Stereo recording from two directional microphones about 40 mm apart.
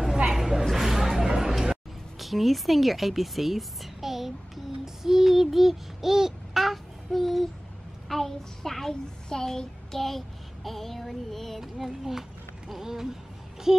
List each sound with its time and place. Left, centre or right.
0.3 s a sound: centre
2.1 s a woman's voice: centre
4.8 s child singing: centre
8.1 s a child's voice: centre
11.6 s speech: centre